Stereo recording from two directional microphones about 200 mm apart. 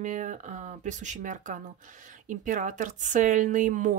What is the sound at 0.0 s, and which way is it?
Speech, 40° right (ahead or behind).